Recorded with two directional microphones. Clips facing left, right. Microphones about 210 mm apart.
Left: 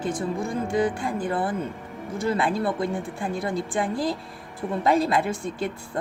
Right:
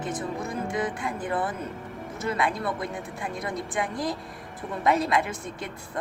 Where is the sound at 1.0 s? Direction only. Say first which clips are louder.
Left 3 dB; 30° left (ahead or behind).